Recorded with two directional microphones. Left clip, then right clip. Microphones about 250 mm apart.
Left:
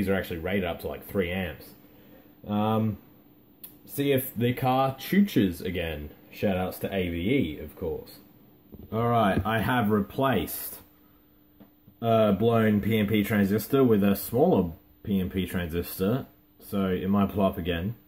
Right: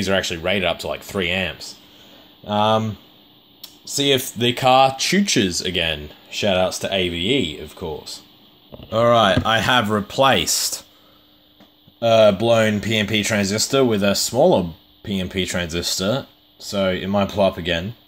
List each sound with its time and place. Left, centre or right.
0.0 s speech: right
3.9 s speech: right
8.9 s speech: right
12.0 s speech: right